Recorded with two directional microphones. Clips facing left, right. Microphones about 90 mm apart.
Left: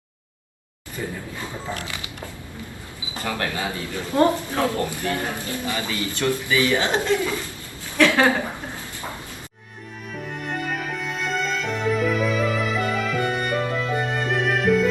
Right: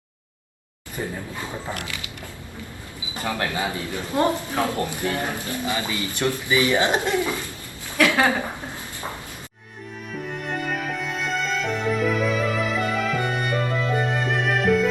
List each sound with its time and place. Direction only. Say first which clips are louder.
1.7 s speech: left 1 dB; 25° left (ahead or behind)
3.2 s a woman's voice: right 1 dB; 20° right (ahead or behind)
10.2 s music: even; centre (ahead or behind)